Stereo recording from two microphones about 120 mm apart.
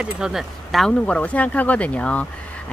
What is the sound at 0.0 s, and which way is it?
Speech, 5° right (ahead or behind).